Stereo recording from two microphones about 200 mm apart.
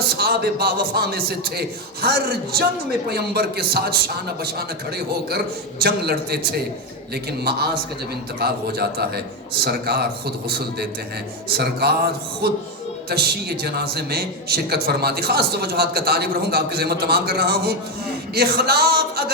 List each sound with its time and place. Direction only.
0.2 s a man's voice: 50° right (ahead or behind)
8.4 s a man's voice: 50° right (ahead or behind)